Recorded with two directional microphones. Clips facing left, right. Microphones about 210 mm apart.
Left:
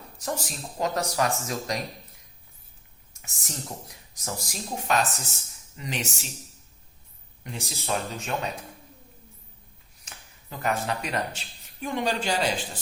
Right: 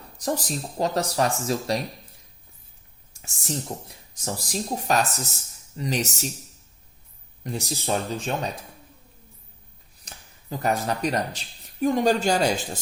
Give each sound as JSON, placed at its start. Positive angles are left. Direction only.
{"t": 0.2, "sound": "speech", "side_deg": -35}
{"t": 3.1, "sound": "speech", "side_deg": -30}
{"t": 7.4, "sound": "speech", "side_deg": -35}
{"t": 10.0, "sound": "speech", "side_deg": -35}